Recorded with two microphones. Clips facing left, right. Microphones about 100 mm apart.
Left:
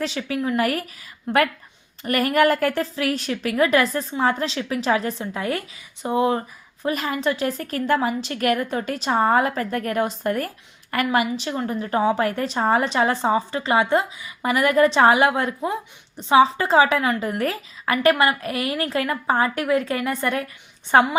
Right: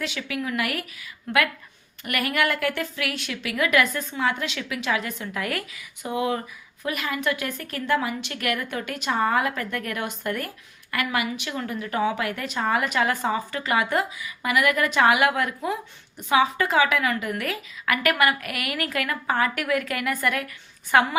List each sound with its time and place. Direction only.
0.0 s a woman's voice: 35° left (ahead or behind)